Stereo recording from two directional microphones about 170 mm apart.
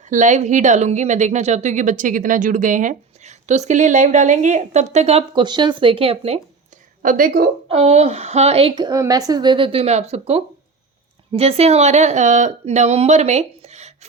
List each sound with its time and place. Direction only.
0.1 s a woman's voice: 45° right (ahead or behind)
7.0 s a woman's voice: 55° right (ahead or behind)
7.7 s a woman's voice: 40° right (ahead or behind)